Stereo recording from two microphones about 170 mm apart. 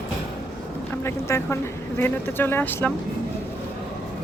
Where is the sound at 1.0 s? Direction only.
15° left (ahead or behind).